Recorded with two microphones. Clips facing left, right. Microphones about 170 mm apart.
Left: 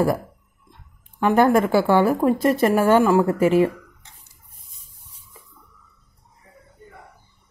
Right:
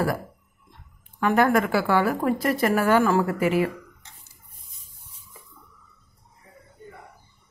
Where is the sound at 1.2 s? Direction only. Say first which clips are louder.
Left 4 dB; 25° left (ahead or behind).